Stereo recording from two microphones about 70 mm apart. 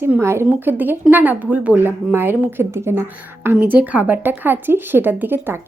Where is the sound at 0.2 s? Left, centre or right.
Right.